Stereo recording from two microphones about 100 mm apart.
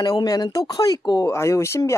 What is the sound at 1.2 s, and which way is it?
Speech, 30° left (ahead or behind).